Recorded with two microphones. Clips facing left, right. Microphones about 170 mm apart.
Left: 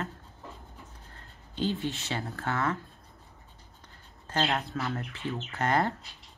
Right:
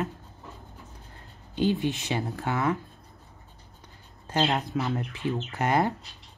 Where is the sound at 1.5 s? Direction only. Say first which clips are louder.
Right 5 dB; 15° right (ahead or behind).